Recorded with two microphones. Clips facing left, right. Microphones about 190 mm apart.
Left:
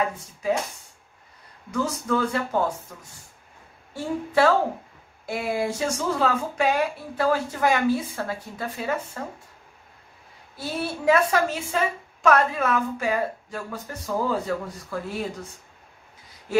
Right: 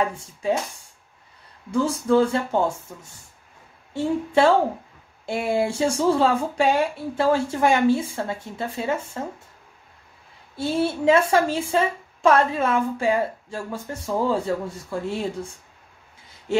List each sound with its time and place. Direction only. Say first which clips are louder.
0.2 s a woman's voice: right 1 dB; 30° right (ahead or behind)
1.7 s a woman's voice: right 5 dB; 30° right (ahead or behind)
10.5 s a woman's voice: right 7 dB; 25° right (ahead or behind)
16.5 s a woman's voice: even; 25° right (ahead or behind)